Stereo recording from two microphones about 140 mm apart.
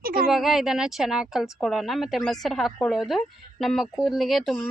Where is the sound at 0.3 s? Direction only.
Centre (ahead or behind).